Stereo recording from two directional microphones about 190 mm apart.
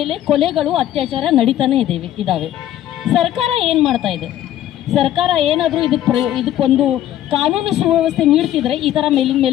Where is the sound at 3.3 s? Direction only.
30° right (ahead or behind).